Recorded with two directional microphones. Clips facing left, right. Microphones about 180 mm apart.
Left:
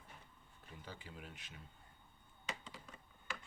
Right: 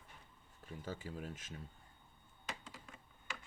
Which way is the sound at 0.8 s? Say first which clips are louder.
Right 8 dB; 45° right (ahead or behind).